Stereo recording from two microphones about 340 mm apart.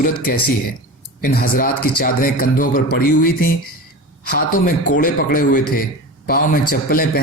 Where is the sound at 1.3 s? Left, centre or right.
Left.